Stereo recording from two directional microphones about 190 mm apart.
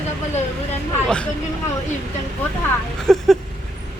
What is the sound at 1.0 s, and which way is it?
Speech, 5° left (ahead or behind).